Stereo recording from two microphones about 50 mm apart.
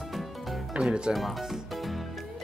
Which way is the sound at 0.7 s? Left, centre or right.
Centre.